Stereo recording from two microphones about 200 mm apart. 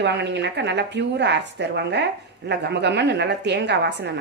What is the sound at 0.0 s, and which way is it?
A woman's voice, 60° right (ahead or behind).